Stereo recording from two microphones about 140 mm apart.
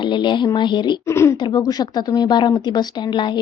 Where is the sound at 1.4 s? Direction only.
30° left (ahead or behind).